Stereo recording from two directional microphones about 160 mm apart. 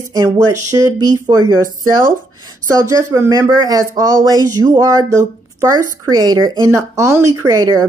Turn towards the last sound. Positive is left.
turn(degrees=-20)  # may be behind; listen again after turning